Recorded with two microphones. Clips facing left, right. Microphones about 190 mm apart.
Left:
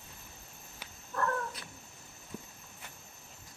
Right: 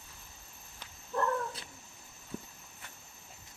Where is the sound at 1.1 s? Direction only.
20° right (ahead or behind).